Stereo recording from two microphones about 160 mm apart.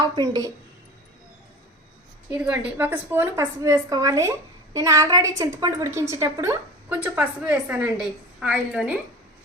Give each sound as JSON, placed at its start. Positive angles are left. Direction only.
{"t": 0.2, "sound": "a woman's voice", "side_deg": -20}
{"t": 2.4, "sound": "a woman's voice", "side_deg": -10}